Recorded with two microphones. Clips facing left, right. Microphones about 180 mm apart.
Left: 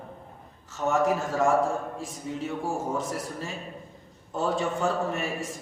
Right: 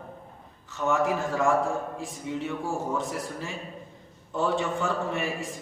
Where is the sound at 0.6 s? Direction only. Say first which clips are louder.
Left 1 dB; 40° left (ahead or behind).